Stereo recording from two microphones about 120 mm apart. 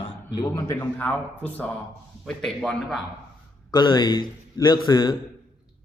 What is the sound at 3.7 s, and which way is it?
A man's voice, 40° left (ahead or behind).